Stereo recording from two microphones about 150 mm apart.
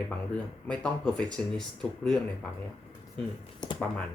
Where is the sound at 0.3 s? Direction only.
5° left (ahead or behind).